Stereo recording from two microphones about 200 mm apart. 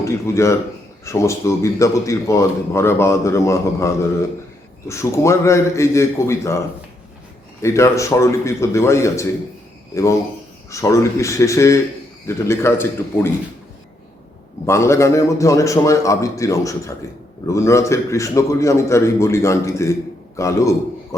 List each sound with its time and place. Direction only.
0.0 s a man's voice: 15° left (ahead or behind)
7.6 s a man's voice: 15° left (ahead or behind)
14.7 s a man's voice: 15° left (ahead or behind)